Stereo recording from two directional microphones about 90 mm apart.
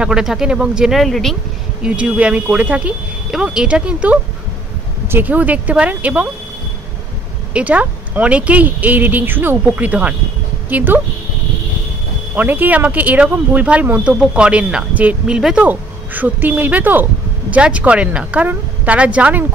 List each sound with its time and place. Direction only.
0.0 s speech: 5° right (ahead or behind)
1.8 s speech: 15° right (ahead or behind)
7.5 s speech: 15° right (ahead or behind)
12.4 s speech: 20° right (ahead or behind)